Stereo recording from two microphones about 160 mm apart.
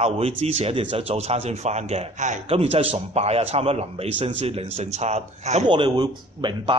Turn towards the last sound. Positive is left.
turn(degrees=-30)  # may be behind; listen again after turning